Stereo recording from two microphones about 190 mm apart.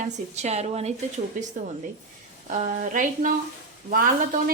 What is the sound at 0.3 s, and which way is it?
A woman's voice, 35° right (ahead or behind).